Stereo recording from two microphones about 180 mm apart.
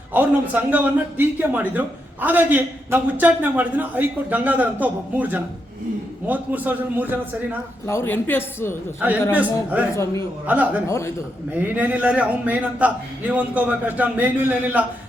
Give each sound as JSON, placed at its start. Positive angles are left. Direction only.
{"t": 0.1, "sound": "a man's voice", "side_deg": -10}
{"t": 7.9, "sound": "speech", "side_deg": 15}
{"t": 9.0, "sound": "a man's voice", "side_deg": -10}
{"t": 9.9, "sound": "speech", "side_deg": 15}
{"t": 10.4, "sound": "a man's voice", "side_deg": -10}
{"t": 10.8, "sound": "speech", "side_deg": 15}
{"t": 11.6, "sound": "a man's voice", "side_deg": -10}